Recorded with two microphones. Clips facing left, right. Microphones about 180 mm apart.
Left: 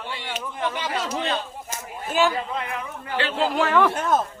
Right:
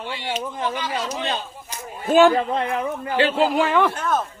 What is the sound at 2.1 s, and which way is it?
Speech, 50° right (ahead or behind).